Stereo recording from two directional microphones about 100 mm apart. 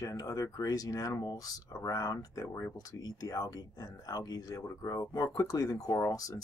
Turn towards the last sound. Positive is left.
turn(degrees=35)  # may be behind; listen again after turning